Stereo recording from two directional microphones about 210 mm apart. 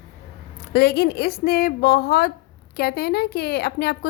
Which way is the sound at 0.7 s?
50° left (ahead or behind).